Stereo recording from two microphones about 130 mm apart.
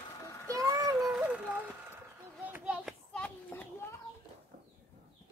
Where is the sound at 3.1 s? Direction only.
10° left (ahead or behind).